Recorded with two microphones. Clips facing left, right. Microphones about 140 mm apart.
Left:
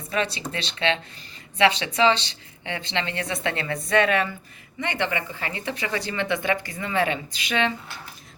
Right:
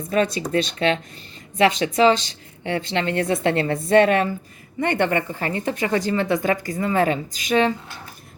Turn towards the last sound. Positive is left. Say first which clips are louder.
# right 6 dB
turn(degrees=-40)  # may be behind; listen again after turning